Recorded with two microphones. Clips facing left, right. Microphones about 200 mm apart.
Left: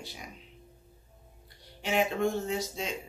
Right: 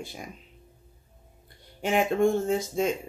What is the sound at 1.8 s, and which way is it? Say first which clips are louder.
Speech: right 5 dB; 50° right (ahead or behind).